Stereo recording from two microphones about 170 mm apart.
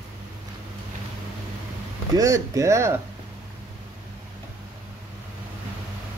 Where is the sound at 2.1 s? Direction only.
20° right (ahead or behind).